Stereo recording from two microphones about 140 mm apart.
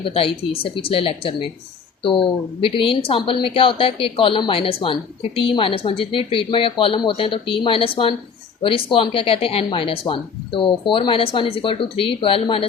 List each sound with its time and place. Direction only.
0.0 s speech: 40° left (ahead or behind)